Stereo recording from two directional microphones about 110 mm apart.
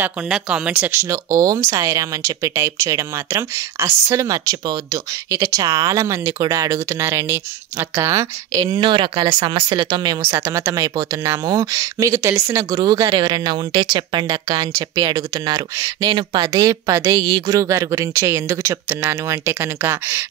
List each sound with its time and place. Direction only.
0.3 s speech: 5° right (ahead or behind)
0.9 s speech: 30° right (ahead or behind)
8.7 s speech: 50° right (ahead or behind)
10.2 s speech: 20° right (ahead or behind)